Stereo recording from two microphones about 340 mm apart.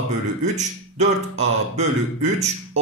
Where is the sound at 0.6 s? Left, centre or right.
Centre.